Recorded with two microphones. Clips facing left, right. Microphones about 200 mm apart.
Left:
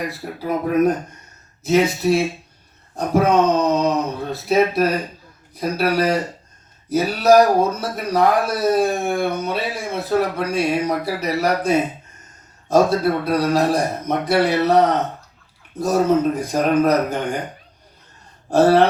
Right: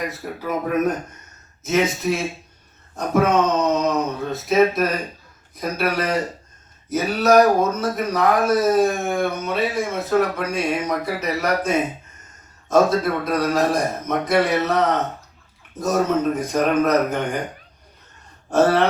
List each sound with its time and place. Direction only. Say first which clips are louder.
0.1 s speech: left 2 dB; 35° left (ahead or behind)
18.5 s speech: left 3 dB; 35° left (ahead or behind)